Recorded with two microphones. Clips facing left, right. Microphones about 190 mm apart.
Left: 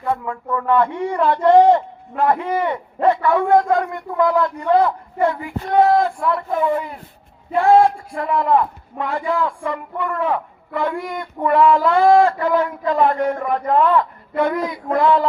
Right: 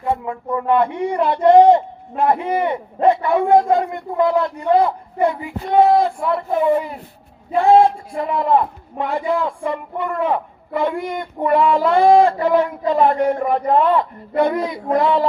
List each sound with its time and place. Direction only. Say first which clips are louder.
0.0 s speech: right 1 dB; 20° right (ahead or behind)